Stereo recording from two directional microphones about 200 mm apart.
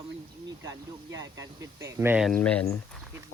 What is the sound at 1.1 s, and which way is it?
Speech, 15° right (ahead or behind).